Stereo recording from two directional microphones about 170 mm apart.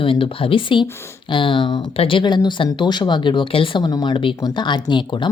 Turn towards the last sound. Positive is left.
turn(degrees=30)  # may be behind; listen again after turning